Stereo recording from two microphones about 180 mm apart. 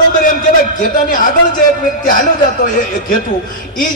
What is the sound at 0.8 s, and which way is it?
Speech, 50° left (ahead or behind).